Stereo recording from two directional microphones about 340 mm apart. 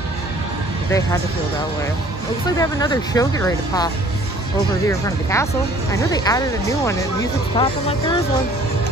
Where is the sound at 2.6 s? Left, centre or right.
Centre.